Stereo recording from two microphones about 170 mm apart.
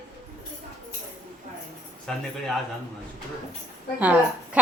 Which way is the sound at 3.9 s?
10° right (ahead or behind).